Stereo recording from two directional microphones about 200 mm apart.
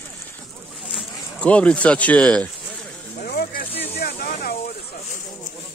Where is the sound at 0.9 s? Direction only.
5° left (ahead or behind).